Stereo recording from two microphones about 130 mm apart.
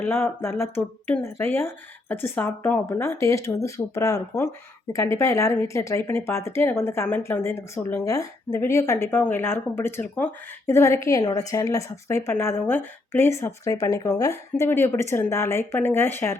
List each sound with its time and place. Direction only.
0.1 s speech: 20° left (ahead or behind)